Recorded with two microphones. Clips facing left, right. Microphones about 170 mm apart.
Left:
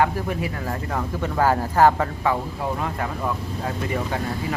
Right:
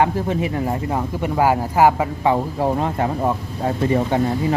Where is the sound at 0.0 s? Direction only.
20° right (ahead or behind).